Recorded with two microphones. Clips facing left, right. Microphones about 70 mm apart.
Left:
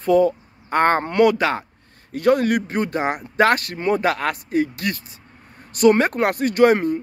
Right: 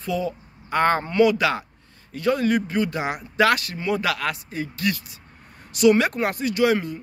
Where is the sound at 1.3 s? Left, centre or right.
Left.